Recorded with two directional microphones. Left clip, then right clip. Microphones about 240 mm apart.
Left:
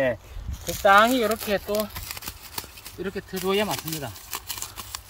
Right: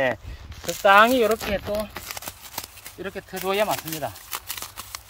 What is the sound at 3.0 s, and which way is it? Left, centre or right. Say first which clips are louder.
Speech: even; centre.